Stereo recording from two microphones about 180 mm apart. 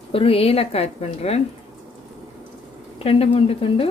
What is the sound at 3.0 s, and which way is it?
Speech, 35° left (ahead or behind).